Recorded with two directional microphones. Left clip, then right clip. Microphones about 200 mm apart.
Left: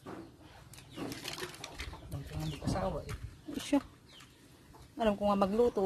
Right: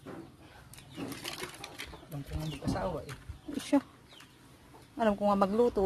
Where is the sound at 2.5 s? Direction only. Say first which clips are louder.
Right 1 dB; 5° right (ahead or behind).